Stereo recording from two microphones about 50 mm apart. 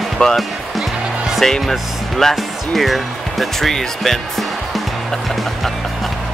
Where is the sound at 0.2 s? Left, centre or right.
Centre.